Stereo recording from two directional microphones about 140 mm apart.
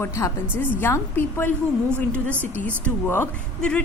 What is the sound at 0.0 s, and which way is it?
A woman's voice, 20° left (ahead or behind).